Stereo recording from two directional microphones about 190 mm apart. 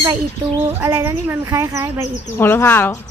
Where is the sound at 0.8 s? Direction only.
15° right (ahead or behind).